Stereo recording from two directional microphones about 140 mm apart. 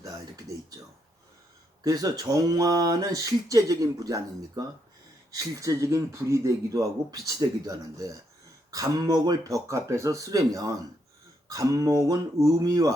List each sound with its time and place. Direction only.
1.8 s speech: 25° right (ahead or behind)